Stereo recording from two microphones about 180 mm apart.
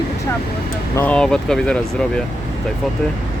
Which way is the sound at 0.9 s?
5° left (ahead or behind).